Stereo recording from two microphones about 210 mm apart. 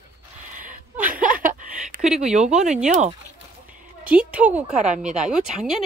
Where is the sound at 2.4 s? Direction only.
30° right (ahead or behind).